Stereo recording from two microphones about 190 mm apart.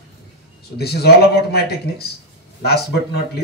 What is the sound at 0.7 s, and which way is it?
A man's voice, 55° left (ahead or behind).